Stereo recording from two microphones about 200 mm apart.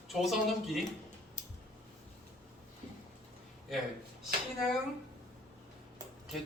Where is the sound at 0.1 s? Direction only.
Centre (ahead or behind).